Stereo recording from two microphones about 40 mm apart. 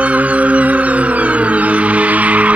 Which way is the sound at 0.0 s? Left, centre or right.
Right.